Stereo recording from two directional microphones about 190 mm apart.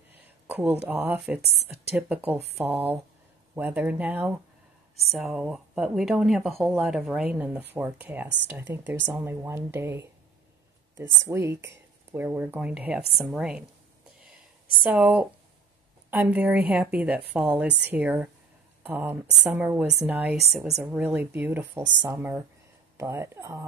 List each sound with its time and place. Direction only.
0.5 s a sound: 10° right (ahead or behind)
0.8 s speech: 10° right (ahead or behind)
14.8 s speech: 5° right (ahead or behind)